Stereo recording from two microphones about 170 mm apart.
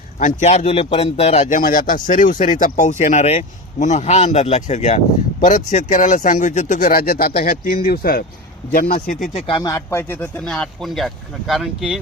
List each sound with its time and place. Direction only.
0.2 s a man's voice: 45° left (ahead or behind)
9.3 s speech: 30° left (ahead or behind); by 11.9 s centre (ahead or behind)